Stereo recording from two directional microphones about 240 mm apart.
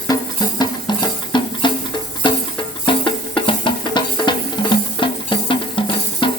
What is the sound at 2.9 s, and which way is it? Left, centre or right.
Music, centre.